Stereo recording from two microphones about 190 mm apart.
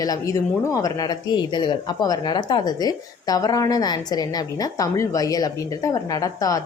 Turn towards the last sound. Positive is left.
turn(degrees=20)  # may be behind; listen again after turning